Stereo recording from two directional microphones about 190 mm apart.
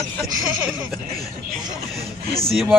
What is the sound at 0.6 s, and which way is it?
Speech, 15° right (ahead or behind).